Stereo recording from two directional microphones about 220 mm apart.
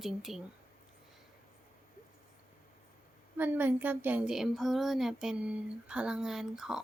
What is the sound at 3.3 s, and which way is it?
A woman's voice, 10° right (ahead or behind).